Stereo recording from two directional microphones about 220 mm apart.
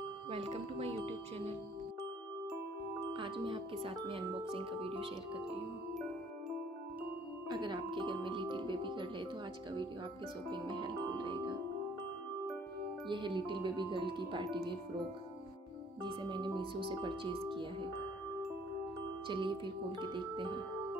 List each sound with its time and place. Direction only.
0.3 s speech: 25° right (ahead or behind)
3.1 s speech: 25° right (ahead or behind)
7.4 s speech: 20° right (ahead or behind)
10.5 s music: 20° right (ahead or behind)
13.1 s speech: 20° right (ahead or behind)
16.0 s speech: 20° right (ahead or behind)
19.2 s speech: 20° right (ahead or behind)